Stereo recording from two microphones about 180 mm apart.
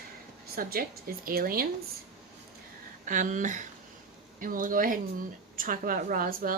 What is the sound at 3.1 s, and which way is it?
A woman's voice, 45° right (ahead or behind).